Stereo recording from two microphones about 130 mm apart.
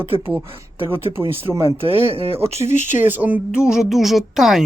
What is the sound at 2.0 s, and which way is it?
Speech, 50° right (ahead or behind).